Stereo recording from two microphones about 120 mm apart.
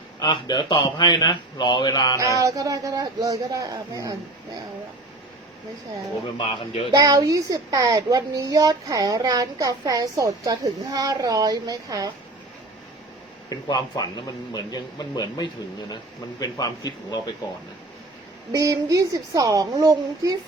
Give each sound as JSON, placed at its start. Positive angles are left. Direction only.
{"t": 0.2, "sound": "speech", "side_deg": 35}
{"t": 2.4, "sound": "a child's voice", "side_deg": -30}
{"t": 6.3, "sound": "a man's voice", "side_deg": 45}
{"t": 6.9, "sound": "speech", "side_deg": -30}
{"t": 13.5, "sound": "speech", "side_deg": 35}
{"t": 18.5, "sound": "a child's voice", "side_deg": -25}